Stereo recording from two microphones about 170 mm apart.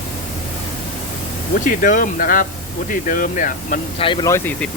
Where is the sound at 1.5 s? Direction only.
55° left (ahead or behind).